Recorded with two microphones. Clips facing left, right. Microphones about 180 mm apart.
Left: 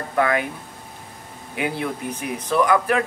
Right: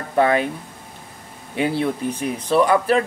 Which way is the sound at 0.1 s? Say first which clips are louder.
Right 4 dB; 30° right (ahead or behind).